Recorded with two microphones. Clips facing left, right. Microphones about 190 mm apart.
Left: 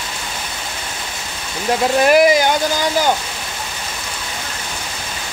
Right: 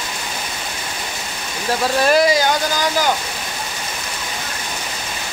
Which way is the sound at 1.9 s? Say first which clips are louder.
Left 3 dB; 15° left (ahead or behind).